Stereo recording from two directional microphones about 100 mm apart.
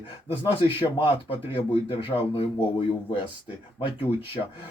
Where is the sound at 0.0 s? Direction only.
60° left (ahead or behind).